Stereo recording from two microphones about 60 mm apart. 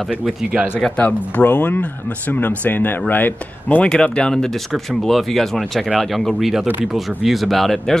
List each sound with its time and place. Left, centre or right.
0.9 s speech: left
3.9 s speech: centre